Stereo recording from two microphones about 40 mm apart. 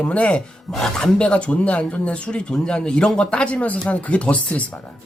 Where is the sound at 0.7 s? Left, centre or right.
Centre.